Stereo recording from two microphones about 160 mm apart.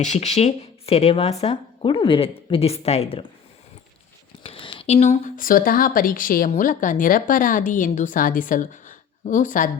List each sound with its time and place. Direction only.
0.0 s a woman's voice: 45° left (ahead or behind)
4.4 s a woman's voice: 35° left (ahead or behind); by 9.6 s 50° left (ahead or behind)